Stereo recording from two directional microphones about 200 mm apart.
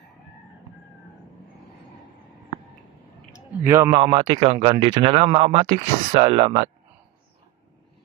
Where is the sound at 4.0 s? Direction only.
30° right (ahead or behind).